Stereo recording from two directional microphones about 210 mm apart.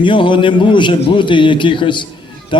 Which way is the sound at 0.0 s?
25° left (ahead or behind).